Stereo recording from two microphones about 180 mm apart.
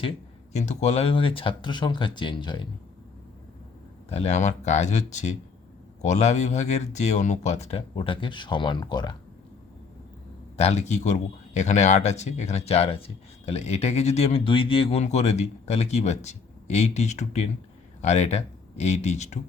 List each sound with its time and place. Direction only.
0.5 s speech: 40° left (ahead or behind)
4.1 s speech: 35° left (ahead or behind)
10.6 s speech: 35° left (ahead or behind)